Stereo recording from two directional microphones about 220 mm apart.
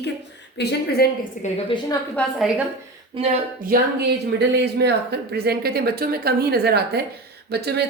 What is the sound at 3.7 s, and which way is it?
Speech, 40° right (ahead or behind).